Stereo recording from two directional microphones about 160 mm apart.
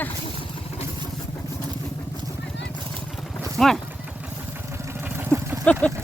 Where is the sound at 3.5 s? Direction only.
Centre (ahead or behind).